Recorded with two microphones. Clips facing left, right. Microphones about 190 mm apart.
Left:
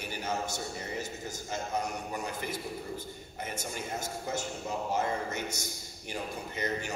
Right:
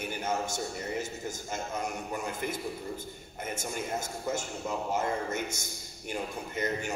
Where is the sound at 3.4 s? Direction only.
50° right (ahead or behind).